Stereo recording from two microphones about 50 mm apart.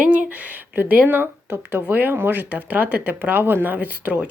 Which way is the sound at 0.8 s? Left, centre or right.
Right.